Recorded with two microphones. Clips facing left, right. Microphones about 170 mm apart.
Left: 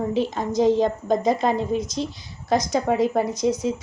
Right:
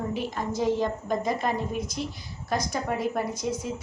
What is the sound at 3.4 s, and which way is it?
Speech, 20° left (ahead or behind).